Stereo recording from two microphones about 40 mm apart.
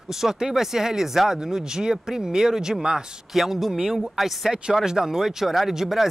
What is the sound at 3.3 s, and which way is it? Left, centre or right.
Speech, centre.